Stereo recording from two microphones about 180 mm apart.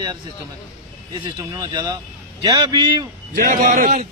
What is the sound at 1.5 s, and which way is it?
Speech, 25° right (ahead or behind).